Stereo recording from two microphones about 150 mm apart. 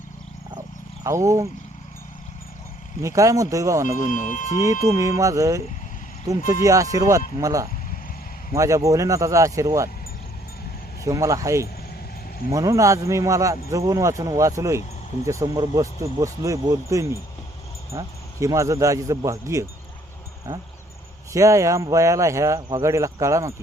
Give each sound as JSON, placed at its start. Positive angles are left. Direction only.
{"t": 1.0, "sound": "speech", "side_deg": -20}
{"t": 3.0, "sound": "speech", "side_deg": -20}
{"t": 3.9, "sound": "speech", "side_deg": 60}
{"t": 4.9, "sound": "speech", "side_deg": -20}
{"t": 11.0, "sound": "speech", "side_deg": -20}
{"t": 21.3, "sound": "speech", "side_deg": -20}